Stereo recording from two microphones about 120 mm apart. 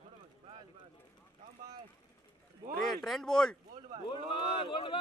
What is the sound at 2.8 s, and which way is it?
Speech, centre (ahead or behind).